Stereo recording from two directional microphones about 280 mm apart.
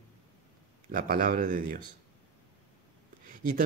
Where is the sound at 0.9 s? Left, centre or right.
Right.